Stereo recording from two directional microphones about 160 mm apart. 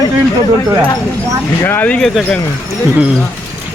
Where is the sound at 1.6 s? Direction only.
10° left (ahead or behind).